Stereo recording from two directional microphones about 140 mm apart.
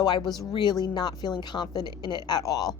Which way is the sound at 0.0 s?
30° left (ahead or behind).